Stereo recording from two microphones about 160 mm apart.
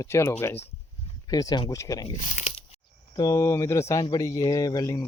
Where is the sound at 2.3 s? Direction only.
40° left (ahead or behind).